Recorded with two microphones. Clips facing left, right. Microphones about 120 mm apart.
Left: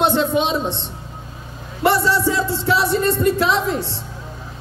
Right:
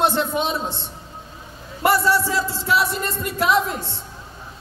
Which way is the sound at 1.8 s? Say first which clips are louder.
Left 2 dB; 25° left (ahead or behind).